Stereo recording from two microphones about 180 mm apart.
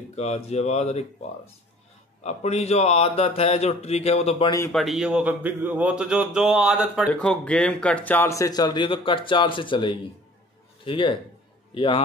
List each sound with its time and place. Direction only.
0.1 s speech: 35° left (ahead or behind)
2.2 s speech: 35° left (ahead or behind)
4.7 s a man's voice: centre (ahead or behind); by 12.0 s 30° left (ahead or behind)